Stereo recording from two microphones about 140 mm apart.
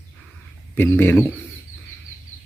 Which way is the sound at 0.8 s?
15° left (ahead or behind).